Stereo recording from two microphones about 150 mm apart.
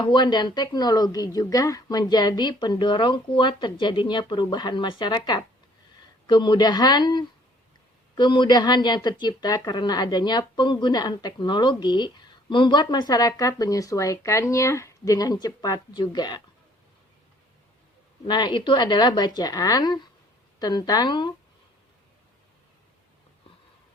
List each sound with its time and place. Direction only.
0.0 s speech: 30° left (ahead or behind)
18.3 s speech: 30° left (ahead or behind)